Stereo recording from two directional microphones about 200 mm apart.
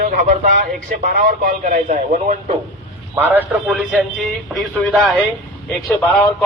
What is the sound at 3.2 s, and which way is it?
A man's voice, 10° right (ahead or behind).